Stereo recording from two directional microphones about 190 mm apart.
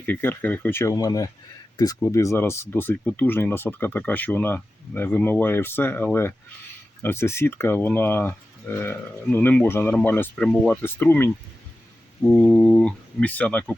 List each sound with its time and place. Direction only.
0.0 s speech: 10° left (ahead or behind)